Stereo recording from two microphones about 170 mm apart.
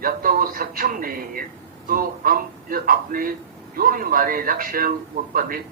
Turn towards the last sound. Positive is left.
turn(degrees=-55)  # may be behind; listen again after turning